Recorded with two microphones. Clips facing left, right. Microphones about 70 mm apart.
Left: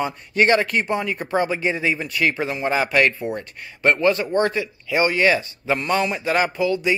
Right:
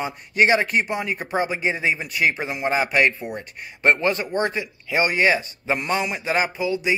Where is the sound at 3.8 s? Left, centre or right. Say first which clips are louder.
Left 2 dB; right.